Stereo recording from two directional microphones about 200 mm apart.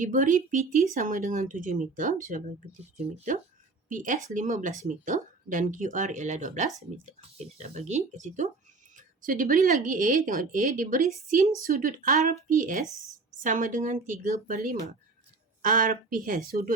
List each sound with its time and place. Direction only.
0.0 s speech: 40° right (ahead or behind)